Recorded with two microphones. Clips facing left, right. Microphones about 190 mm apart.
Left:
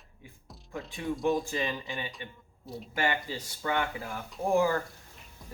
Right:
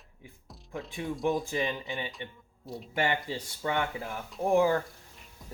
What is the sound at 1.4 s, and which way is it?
Speech, 20° right (ahead or behind).